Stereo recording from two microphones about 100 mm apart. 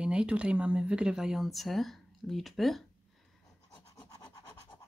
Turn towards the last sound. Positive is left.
turn(degrees=40)  # may be behind; listen again after turning